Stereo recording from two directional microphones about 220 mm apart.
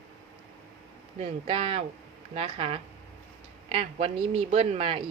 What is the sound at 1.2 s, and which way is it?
Speech, 25° right (ahead or behind).